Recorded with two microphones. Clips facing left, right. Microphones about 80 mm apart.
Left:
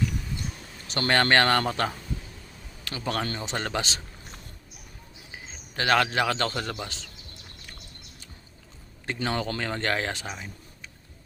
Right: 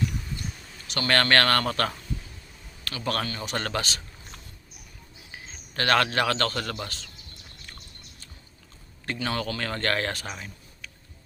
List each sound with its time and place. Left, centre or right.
0.9 s speech: left
5.7 s speech: centre
9.2 s speech: centre